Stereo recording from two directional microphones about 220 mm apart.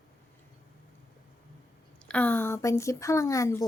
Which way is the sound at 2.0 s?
5° left (ahead or behind).